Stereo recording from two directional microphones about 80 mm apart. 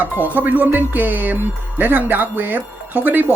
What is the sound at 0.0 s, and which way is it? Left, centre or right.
Speech, right.